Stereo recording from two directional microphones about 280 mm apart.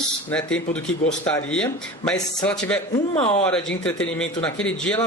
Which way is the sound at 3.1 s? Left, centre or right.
Left.